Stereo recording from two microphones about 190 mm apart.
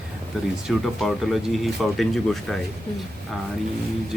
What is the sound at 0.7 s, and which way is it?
Speech, centre (ahead or behind).